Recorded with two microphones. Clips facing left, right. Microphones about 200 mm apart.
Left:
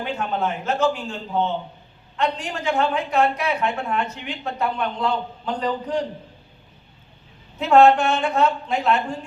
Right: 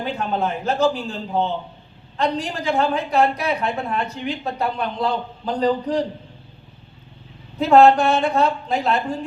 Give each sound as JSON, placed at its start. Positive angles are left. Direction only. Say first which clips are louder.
{"t": 0.0, "sound": "a woman's voice", "louder": "right 1 dB", "side_deg": -35}
{"t": 7.6, "sound": "a woman's voice", "louder": "right 2 dB", "side_deg": -35}